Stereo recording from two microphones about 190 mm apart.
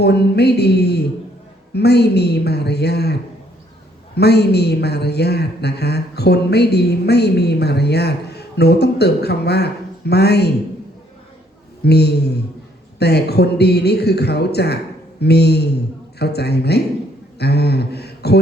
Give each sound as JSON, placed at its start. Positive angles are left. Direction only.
{"t": 0.0, "sound": "a man's voice", "side_deg": 60}
{"t": 11.9, "sound": "a man's voice", "side_deg": 60}
{"t": 17.3, "sound": "a sound", "side_deg": 60}